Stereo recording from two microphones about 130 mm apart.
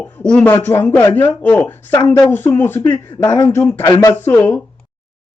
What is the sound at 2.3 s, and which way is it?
Speech, 15° left (ahead or behind).